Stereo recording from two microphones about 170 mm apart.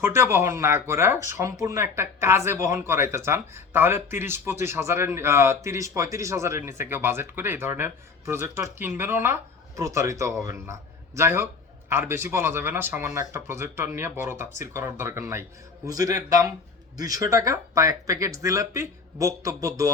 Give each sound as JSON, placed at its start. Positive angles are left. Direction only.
{"t": 0.0, "sound": "speech", "side_deg": -15}